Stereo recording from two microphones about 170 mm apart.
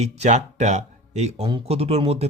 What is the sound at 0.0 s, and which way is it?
Speech, 40° right (ahead or behind).